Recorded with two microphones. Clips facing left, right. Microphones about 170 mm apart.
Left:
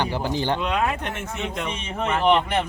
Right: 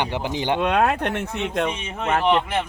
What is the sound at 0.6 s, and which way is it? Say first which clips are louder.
Speech: right 4 dB; 65° right (ahead or behind).